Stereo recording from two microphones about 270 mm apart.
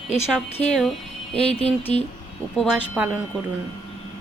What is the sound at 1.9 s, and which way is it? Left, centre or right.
Music, centre.